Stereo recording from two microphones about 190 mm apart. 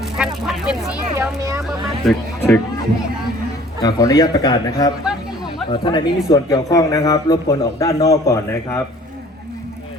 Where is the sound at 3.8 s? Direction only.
20° left (ahead or behind).